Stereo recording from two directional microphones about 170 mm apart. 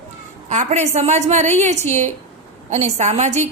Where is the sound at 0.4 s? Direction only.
45° right (ahead or behind).